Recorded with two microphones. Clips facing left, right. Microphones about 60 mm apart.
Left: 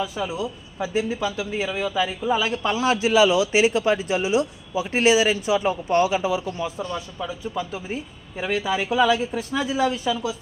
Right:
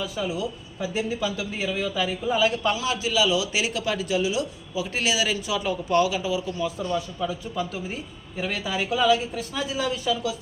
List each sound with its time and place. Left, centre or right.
0.0 s speech: centre
2.7 s a man's voice: left
6.9 s speech: centre